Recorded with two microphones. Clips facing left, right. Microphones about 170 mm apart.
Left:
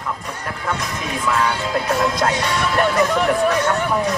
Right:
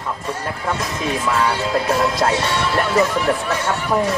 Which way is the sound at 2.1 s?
25° right (ahead or behind).